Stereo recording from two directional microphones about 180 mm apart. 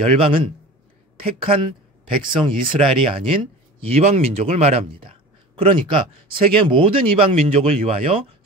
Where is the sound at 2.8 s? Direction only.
30° right (ahead or behind).